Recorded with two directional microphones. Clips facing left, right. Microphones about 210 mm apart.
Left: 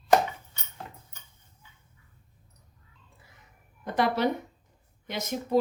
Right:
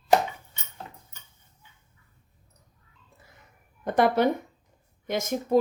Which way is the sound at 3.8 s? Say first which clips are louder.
Right 4 dB; 50° right (ahead or behind).